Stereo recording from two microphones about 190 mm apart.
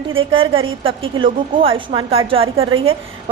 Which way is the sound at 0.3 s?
30° right (ahead or behind).